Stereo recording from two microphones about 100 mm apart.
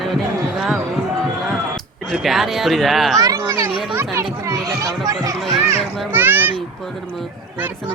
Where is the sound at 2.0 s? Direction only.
Centre (ahead or behind).